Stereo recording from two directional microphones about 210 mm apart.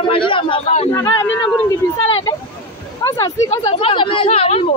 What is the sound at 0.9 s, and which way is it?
Speech, 15° left (ahead or behind).